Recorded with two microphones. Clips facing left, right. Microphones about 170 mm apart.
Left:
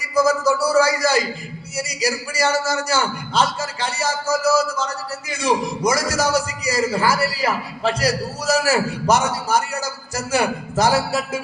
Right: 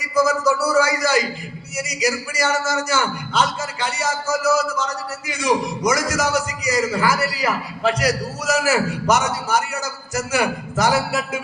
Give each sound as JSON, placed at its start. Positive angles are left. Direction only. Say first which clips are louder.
{"t": 0.1, "sound": "a man's voice", "louder": "left 1 dB", "side_deg": 30}